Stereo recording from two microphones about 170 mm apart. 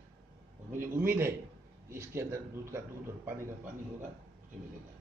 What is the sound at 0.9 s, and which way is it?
A man's voice, 15° right (ahead or behind).